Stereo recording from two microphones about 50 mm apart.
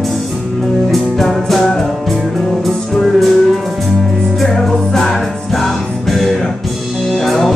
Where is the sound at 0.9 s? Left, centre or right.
Centre.